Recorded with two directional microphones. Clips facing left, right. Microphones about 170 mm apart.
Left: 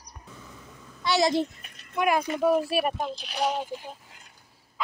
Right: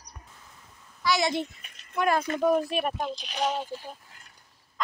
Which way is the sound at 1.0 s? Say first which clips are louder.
Left 3 dB; 35° left (ahead or behind).